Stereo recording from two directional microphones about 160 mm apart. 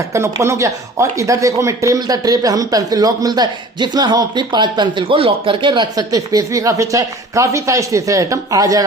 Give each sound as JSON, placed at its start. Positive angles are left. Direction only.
{"t": 0.1, "sound": "speech", "side_deg": -20}